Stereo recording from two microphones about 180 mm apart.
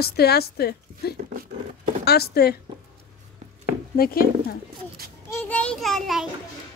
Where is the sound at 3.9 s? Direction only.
55° left (ahead or behind).